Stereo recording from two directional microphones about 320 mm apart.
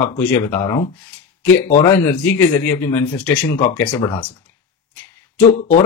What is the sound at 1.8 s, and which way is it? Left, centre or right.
A man's voice, centre.